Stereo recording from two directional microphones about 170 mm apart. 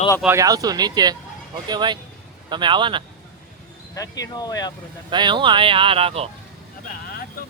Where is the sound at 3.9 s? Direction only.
20° left (ahead or behind).